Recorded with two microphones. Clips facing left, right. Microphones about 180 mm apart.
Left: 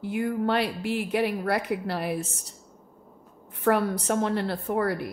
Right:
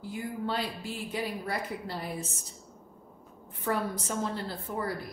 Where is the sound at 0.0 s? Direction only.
70° left (ahead or behind).